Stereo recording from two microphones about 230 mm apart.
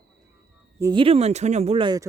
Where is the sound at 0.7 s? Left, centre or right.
Centre.